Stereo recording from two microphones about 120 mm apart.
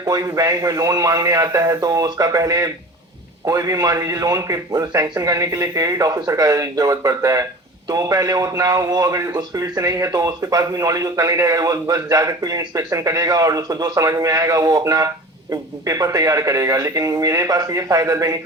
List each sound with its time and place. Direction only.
0.0 s speech: 30° right (ahead or behind)